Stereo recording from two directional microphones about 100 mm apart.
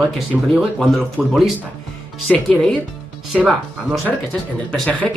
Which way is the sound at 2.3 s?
10° left (ahead or behind).